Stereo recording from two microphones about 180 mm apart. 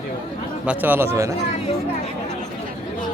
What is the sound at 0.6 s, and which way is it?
Speech, 10° right (ahead or behind).